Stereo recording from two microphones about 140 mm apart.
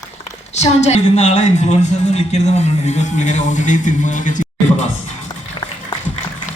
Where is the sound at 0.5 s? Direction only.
50° left (ahead or behind).